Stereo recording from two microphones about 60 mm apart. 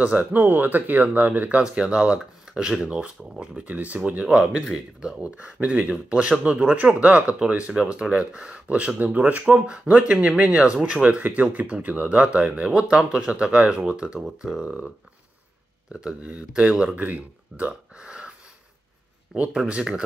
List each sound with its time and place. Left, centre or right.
0.0 s speech: right
1.6 s speech: centre
4.3 s speech: centre
5.2 s speech: right
14.6 s speech: right
15.9 s speech: centre
19.5 s speech: centre